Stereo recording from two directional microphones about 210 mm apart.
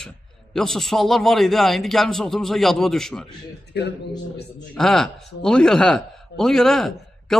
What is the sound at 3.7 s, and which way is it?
Speech, 55° left (ahead or behind).